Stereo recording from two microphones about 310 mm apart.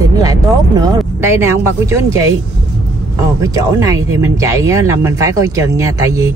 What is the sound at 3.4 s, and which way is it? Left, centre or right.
Speech, centre.